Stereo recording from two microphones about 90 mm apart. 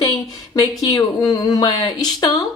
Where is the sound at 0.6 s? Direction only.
40° left (ahead or behind).